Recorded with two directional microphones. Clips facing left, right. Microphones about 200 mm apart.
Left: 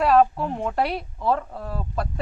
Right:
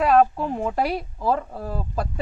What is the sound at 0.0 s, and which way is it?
Speech, centre (ahead or behind).